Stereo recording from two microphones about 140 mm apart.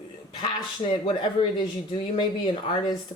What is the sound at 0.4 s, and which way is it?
Speech, 40° left (ahead or behind).